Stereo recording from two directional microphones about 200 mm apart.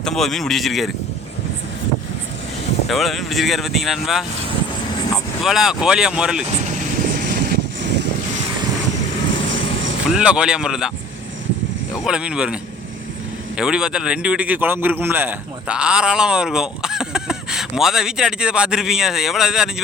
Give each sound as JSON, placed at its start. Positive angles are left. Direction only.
{"t": 0.0, "sound": "a man's voice", "side_deg": 0}
{"t": 2.8, "sound": "a man's voice", "side_deg": 0}
{"t": 5.4, "sound": "a man's voice", "side_deg": 0}
{"t": 6.7, "sound": "vehicle", "side_deg": -45}
{"t": 10.1, "sound": "a man's voice", "side_deg": -5}
{"t": 12.0, "sound": "a man's voice", "side_deg": -5}
{"t": 13.6, "sound": "a man's voice", "side_deg": -5}